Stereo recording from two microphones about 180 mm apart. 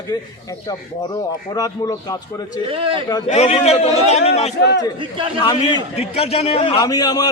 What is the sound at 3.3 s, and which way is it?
A man's voice, 40° left (ahead or behind).